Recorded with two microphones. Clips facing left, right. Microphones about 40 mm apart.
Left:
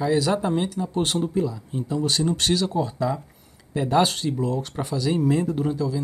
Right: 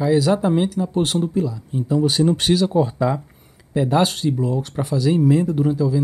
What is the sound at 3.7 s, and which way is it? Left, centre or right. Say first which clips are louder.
Speech: right 2 dB; centre.